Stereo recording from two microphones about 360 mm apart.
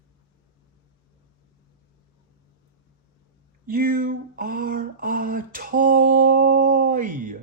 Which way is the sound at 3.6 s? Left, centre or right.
Right.